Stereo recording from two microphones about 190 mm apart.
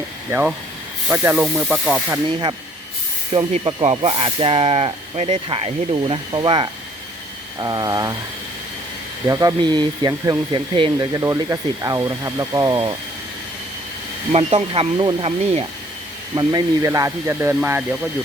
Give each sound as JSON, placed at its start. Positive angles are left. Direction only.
{"t": 0.3, "sound": "speech", "side_deg": -10}
{"t": 3.6, "sound": "speech", "side_deg": -25}
{"t": 9.2, "sound": "speech", "side_deg": -15}
{"t": 14.3, "sound": "speech", "side_deg": -30}